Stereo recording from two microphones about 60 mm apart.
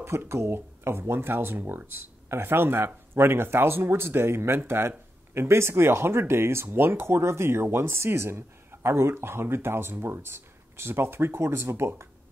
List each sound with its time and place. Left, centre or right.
0.0 s speech: right